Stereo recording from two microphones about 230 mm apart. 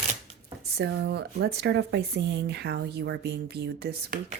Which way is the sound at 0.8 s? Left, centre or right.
Right.